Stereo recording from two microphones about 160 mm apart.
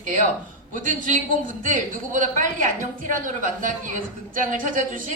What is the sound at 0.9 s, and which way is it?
A woman's voice, 55° right (ahead or behind).